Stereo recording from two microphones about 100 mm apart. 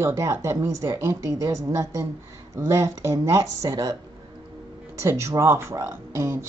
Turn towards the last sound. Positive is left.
turn(degrees=-25)  # may be behind; listen again after turning